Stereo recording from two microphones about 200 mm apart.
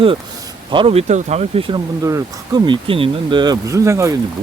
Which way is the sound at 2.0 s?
20° right (ahead or behind).